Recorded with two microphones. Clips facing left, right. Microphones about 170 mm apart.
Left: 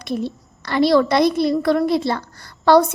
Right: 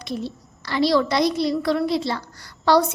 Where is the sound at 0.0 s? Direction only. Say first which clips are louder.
Left 5 dB; 55° left (ahead or behind).